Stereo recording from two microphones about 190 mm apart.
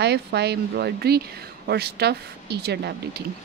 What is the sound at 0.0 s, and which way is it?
Speech, 60° right (ahead or behind).